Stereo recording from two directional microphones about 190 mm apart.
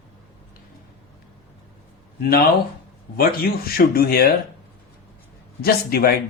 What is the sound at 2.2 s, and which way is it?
Speech, 55° left (ahead or behind).